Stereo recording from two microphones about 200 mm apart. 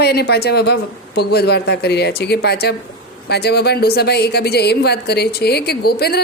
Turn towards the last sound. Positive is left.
turn(degrees=50)  # may be behind; listen again after turning